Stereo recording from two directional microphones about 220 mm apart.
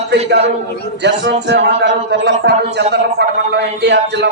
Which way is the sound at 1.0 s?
50° right (ahead or behind).